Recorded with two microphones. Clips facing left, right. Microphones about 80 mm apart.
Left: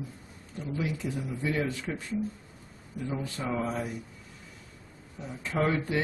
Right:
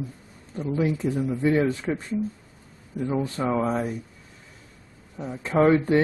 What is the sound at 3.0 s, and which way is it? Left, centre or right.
Speech, right.